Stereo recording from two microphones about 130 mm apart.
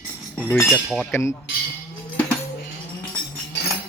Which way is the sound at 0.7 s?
5° right (ahead or behind).